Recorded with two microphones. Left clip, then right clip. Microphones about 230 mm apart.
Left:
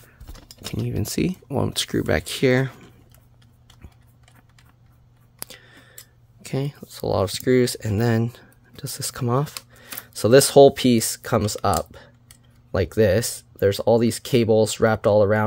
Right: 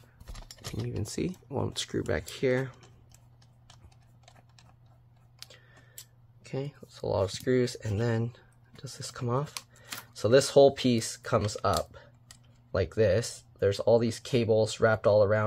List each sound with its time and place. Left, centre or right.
0.8 s speech: left
5.5 s a sound: left
6.4 s speech: left